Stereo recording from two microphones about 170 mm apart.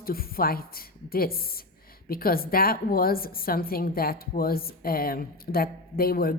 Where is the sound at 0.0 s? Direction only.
60° left (ahead or behind).